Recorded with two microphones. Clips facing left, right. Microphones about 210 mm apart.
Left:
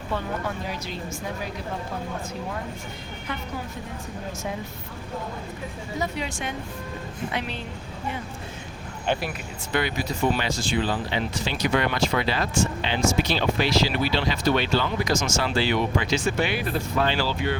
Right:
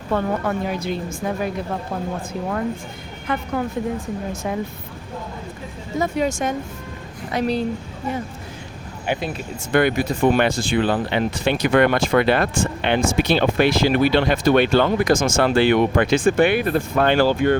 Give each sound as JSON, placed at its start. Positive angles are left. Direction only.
{"t": 0.1, "sound": "speech", "side_deg": -55}
{"t": 3.3, "sound": "speech", "side_deg": -55}
{"t": 6.0, "sound": "speech", "side_deg": -45}
{"t": 9.1, "sound": "speech", "side_deg": -10}
{"t": 9.7, "sound": "speech", "side_deg": -55}